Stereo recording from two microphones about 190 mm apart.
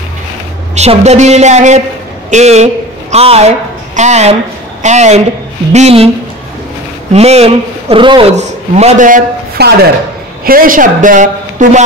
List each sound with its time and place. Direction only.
0.7 s speech: 35° right (ahead or behind)
7.1 s speech: 35° right (ahead or behind)
9.6 s a woman's voice: 60° right (ahead or behind); by 11.7 s 40° right (ahead or behind)